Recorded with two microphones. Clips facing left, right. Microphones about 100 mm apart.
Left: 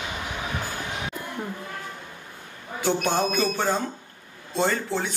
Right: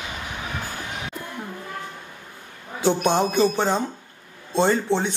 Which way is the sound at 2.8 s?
20° right (ahead or behind).